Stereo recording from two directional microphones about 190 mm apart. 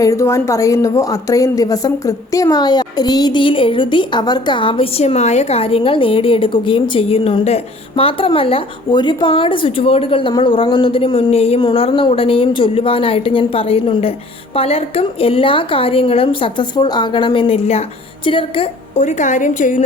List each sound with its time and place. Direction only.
0.0 s a woman's voice: 15° left (ahead or behind); by 19.8 s 40° left (ahead or behind)